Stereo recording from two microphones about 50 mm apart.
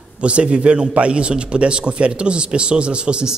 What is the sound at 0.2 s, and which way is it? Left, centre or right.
A man's voice, right.